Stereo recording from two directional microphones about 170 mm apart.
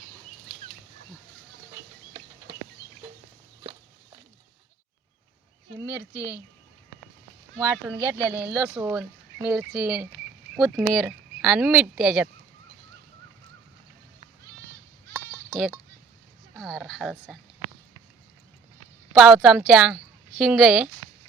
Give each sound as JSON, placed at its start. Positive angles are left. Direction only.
{"t": 5.8, "sound": "speech", "side_deg": 20}
{"t": 7.6, "sound": "speech", "side_deg": -15}
{"t": 15.1, "sound": "sheep", "side_deg": -5}
{"t": 16.6, "sound": "speech", "side_deg": 0}
{"t": 19.1, "sound": "speech", "side_deg": 0}